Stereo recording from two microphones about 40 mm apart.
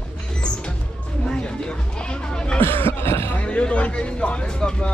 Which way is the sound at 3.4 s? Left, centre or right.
Left.